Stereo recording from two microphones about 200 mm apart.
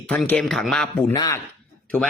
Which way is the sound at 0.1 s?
5° left (ahead or behind).